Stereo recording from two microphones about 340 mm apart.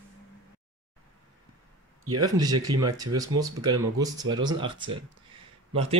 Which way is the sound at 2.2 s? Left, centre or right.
Centre.